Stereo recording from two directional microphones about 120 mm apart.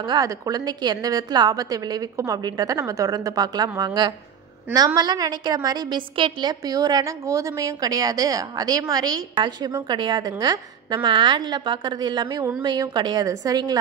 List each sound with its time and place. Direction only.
0.0 s a woman's voice: 35° right (ahead or behind)
6.6 s a woman's voice: 30° right (ahead or behind)
9.9 s a woman's voice: 40° right (ahead or behind)